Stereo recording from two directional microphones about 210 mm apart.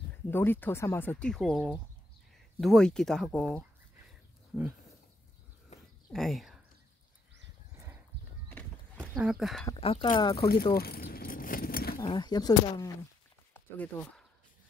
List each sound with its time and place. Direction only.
0.3 s speech: 10° left (ahead or behind)
6.1 s speech: centre (ahead or behind)
8.5 s clip-clop: 10° left (ahead or behind)
9.0 s speech: 5° right (ahead or behind)
9.8 s speech: 30° left (ahead or behind)
10.7 s keys jangling: 45° left (ahead or behind)
12.0 s speech: 20° left (ahead or behind)
13.5 s a sound: 10° left (ahead or behind)